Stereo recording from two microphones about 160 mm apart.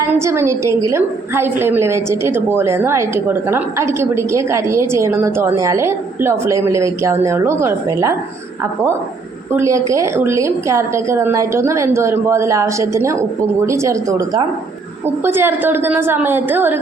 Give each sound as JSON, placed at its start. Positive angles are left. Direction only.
{"t": 0.0, "sound": "a woman's voice", "side_deg": -15}
{"t": 9.5, "sound": "a woman's voice", "side_deg": -20}